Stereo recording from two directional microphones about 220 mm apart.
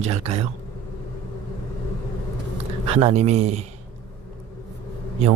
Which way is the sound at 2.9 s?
30° right (ahead or behind).